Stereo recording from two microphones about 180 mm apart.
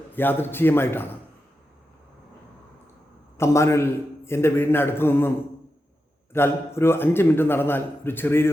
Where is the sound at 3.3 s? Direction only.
15° left (ahead or behind).